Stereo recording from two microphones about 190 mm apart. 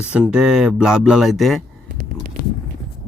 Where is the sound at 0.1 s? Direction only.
5° right (ahead or behind).